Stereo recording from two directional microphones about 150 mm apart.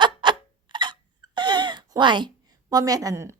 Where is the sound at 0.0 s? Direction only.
30° right (ahead or behind).